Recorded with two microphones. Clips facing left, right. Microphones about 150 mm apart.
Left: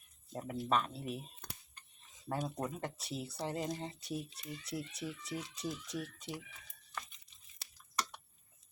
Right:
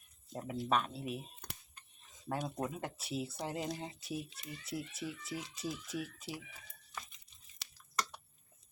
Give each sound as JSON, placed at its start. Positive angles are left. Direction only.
{"t": 0.3, "sound": "speech", "side_deg": 0}